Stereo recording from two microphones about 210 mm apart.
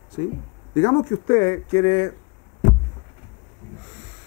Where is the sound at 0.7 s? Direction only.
25° left (ahead or behind).